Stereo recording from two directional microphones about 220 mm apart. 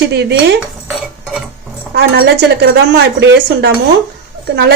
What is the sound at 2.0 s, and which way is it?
A woman's voice, 50° right (ahead or behind).